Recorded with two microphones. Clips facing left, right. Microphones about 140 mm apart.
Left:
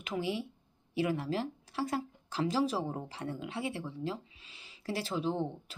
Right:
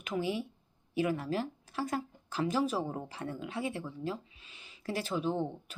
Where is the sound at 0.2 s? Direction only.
25° left (ahead or behind).